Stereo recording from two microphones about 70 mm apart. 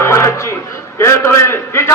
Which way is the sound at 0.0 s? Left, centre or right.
Left.